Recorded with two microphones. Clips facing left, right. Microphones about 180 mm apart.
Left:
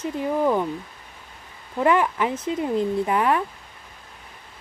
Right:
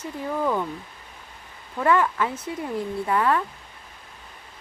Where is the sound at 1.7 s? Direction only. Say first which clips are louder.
Left 1 dB; 20° left (ahead or behind).